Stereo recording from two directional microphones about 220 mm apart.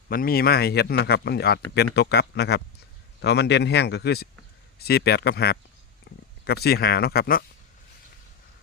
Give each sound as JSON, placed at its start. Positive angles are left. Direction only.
{"t": 0.1, "sound": "speech", "side_deg": 40}
{"t": 6.1, "sound": "a sound", "side_deg": 50}
{"t": 6.4, "sound": "speech", "side_deg": 45}